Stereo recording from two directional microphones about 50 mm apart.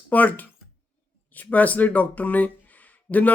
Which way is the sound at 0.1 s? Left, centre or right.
Left.